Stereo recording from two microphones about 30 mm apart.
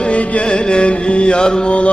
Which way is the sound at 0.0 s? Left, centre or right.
Left.